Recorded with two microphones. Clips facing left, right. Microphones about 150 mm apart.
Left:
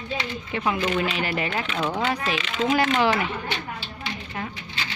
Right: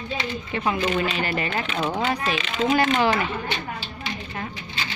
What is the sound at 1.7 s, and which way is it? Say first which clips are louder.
Speech: right 1 dB; 15° right (ahead or behind).